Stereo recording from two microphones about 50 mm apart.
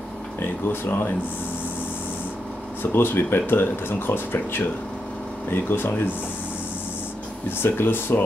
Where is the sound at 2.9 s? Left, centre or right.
Left.